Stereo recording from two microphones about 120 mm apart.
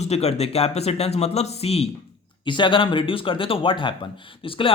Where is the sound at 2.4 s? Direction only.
40° left (ahead or behind).